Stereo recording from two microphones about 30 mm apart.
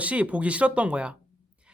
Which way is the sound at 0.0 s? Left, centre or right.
Right.